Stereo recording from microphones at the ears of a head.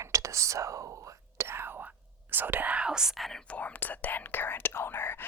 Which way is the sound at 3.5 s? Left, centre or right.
Left.